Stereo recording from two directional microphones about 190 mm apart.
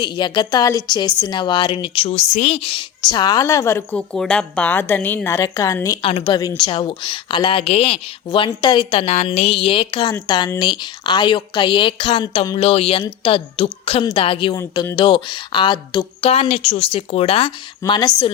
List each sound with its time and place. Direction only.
0.0 s a woman's voice: 25° left (ahead or behind)
6.0 s a woman's voice: 30° left (ahead or behind)
16.3 s a woman's voice: 35° left (ahead or behind)